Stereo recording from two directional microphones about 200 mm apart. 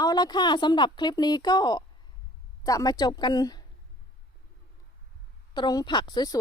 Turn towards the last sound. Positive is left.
turn(degrees=20)  # may be behind; listen again after turning